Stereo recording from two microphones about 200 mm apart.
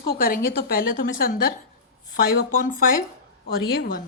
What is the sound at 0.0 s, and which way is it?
A woman's voice, 45° left (ahead or behind).